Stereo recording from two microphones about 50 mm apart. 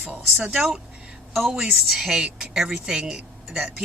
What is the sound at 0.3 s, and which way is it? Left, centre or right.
A woman's voice, centre.